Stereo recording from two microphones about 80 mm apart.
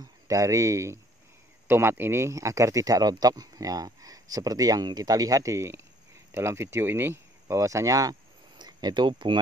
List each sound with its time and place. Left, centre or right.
0.0 s speech: right
8.5 s speech: right